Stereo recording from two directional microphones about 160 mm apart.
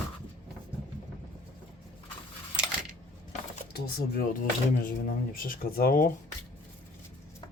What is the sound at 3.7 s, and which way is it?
Speech, 75° left (ahead or behind).